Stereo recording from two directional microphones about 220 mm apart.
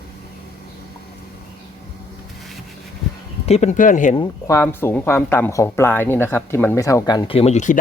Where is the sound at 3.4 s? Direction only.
30° left (ahead or behind).